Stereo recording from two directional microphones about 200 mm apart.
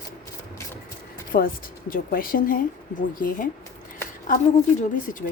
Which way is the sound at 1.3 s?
45° left (ahead or behind).